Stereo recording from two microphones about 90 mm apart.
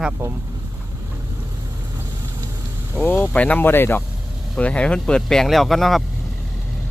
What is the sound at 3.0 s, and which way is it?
Speech, 20° left (ahead or behind).